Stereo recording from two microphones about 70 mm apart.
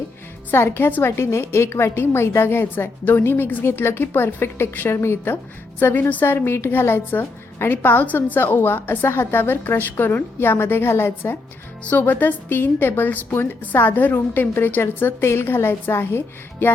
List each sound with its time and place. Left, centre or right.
0.5 s a woman's voice: left